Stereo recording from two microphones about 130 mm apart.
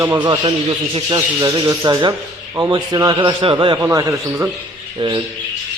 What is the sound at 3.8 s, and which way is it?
Speech, 25° right (ahead or behind).